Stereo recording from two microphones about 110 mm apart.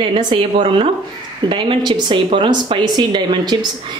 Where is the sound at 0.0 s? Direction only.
50° right (ahead or behind).